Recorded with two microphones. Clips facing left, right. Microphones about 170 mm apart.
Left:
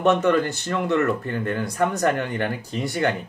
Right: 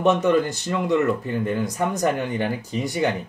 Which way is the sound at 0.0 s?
15° right (ahead or behind).